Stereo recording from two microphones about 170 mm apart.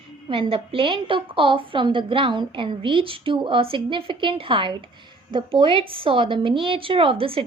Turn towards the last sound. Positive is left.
turn(degrees=-30)  # may be behind; listen again after turning